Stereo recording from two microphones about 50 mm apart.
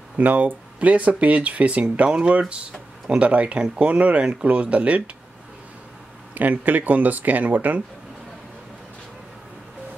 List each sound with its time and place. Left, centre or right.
0.2 s speech: right
6.3 s speech: right